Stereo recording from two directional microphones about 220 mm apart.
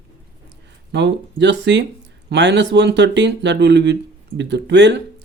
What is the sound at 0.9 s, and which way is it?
A man's voice, 50° right (ahead or behind).